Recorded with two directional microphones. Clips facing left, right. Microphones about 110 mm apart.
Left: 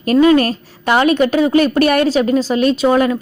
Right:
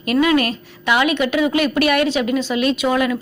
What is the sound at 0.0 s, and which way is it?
A woman's voice, 35° left (ahead or behind).